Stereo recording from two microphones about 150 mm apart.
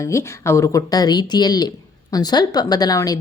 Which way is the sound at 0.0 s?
20° left (ahead or behind).